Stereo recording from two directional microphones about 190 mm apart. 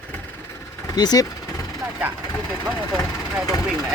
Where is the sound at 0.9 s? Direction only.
20° left (ahead or behind).